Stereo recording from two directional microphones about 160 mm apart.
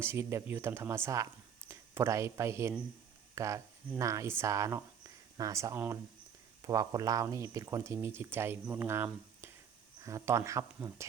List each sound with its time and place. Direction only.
0.0 s speech: 15° right (ahead or behind)